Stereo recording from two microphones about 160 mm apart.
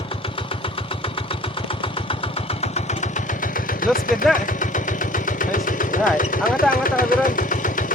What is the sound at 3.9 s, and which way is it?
Speech, 60° left (ahead or behind).